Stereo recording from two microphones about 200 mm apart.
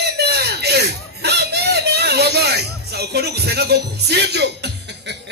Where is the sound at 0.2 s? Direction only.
55° right (ahead or behind).